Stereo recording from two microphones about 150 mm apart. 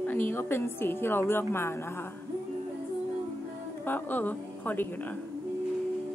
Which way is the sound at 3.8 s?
10° left (ahead or behind).